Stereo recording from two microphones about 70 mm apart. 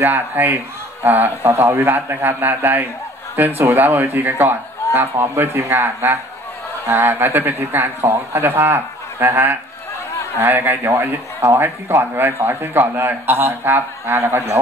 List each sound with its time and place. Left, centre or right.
0.0 s a man's voice: right